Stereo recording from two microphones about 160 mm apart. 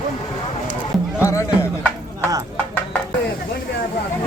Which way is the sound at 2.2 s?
20° right (ahead or behind).